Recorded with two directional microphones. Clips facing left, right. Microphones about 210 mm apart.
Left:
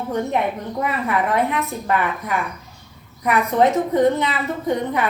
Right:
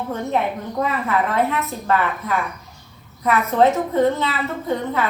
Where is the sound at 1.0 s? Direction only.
15° left (ahead or behind).